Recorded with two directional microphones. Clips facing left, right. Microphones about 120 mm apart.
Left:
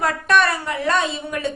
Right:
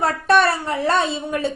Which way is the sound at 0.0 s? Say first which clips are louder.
Right 2 dB; 30° right (ahead or behind).